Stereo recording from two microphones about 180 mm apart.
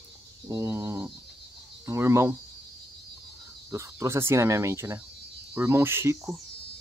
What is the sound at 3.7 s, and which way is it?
Speech, 15° right (ahead or behind).